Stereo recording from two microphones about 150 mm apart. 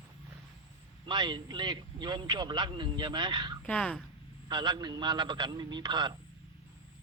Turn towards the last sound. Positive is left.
turn(degrees=-30)  # may be behind; listen again after turning